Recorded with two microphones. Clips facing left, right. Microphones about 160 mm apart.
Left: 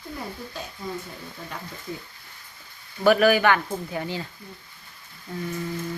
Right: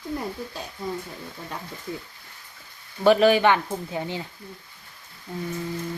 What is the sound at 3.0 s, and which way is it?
Speech, 25° right (ahead or behind).